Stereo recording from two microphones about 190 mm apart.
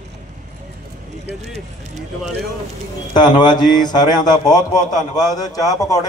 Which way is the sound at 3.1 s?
25° left (ahead or behind).